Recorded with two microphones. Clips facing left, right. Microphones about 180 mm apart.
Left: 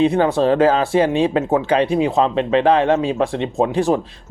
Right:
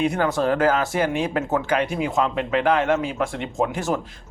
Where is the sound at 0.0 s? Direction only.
30° left (ahead or behind).